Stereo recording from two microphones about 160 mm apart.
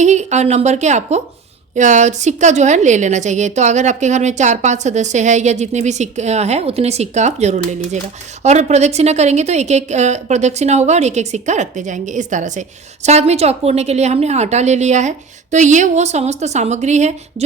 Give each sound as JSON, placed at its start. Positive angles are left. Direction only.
{"t": 0.0, "sound": "a woman's voice", "side_deg": -45}